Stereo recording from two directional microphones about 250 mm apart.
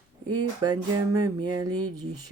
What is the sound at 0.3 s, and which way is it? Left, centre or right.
Speech, centre.